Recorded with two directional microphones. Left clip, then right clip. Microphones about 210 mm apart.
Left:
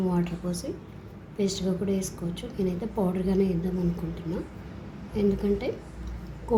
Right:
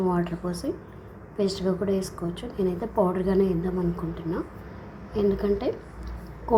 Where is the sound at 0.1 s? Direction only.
10° right (ahead or behind).